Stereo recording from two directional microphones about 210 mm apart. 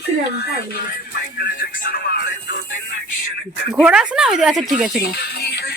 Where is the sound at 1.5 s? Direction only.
45° left (ahead or behind).